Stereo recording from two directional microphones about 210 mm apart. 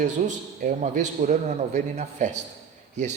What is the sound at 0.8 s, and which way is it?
A man's voice, 35° right (ahead or behind).